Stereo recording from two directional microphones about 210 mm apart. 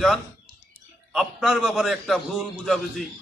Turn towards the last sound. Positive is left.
turn(degrees=0)  # may be behind; listen again after turning